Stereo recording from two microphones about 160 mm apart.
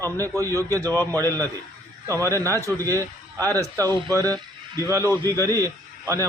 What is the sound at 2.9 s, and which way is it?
A man's voice, 15° left (ahead or behind).